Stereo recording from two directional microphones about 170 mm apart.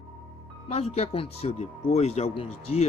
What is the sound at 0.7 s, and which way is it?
Speech, 35° left (ahead or behind).